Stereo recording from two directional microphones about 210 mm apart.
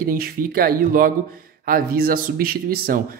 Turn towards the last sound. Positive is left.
turn(degrees=-45)  # may be behind; listen again after turning